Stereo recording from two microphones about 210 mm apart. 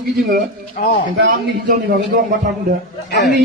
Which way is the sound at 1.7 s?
40° right (ahead or behind).